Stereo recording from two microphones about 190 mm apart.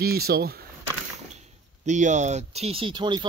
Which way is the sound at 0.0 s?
55° right (ahead or behind).